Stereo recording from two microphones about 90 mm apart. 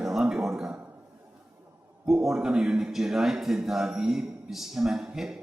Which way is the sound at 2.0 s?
5° right (ahead or behind).